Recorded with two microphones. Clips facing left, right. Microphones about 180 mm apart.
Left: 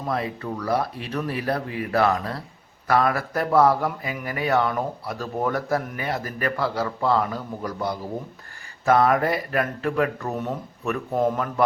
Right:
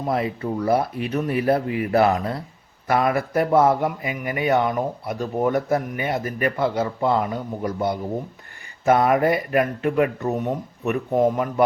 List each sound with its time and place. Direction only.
0.1 s speech: 25° right (ahead or behind)